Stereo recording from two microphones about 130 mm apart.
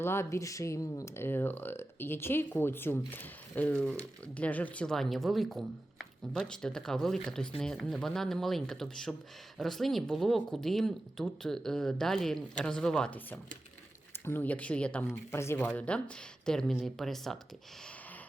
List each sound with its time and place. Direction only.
0.0 s speech: 20° left (ahead or behind)
15.3 s speech: 20° left (ahead or behind); by 17.4 s centre (ahead or behind)